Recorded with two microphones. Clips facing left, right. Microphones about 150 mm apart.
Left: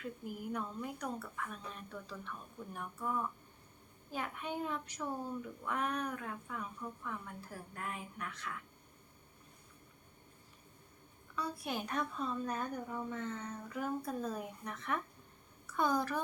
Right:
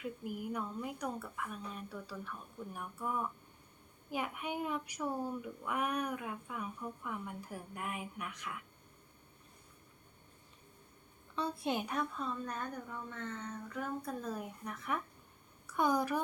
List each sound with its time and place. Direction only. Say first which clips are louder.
0.5 s speech: right 1 dB; 10° right (ahead or behind)
11.3 s a woman's voice: right 4 dB; 25° right (ahead or behind)
11.9 s a woman's voice: even; centre (ahead or behind)